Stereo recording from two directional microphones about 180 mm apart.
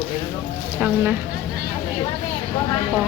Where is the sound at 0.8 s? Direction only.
10° right (ahead or behind).